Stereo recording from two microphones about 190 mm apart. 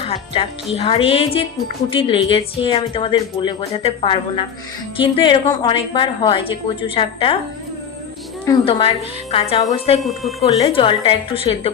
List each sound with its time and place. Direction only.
0.0 s a woman's voice: 30° left (ahead or behind)
8.4 s a woman's voice: 30° left (ahead or behind)
10.0 s speech: centre (ahead or behind)
10.4 s speech: 30° left (ahead or behind)